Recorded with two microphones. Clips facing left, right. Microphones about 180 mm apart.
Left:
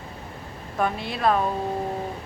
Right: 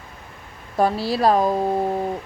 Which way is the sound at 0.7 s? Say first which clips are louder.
Right 6 dB; 35° right (ahead or behind).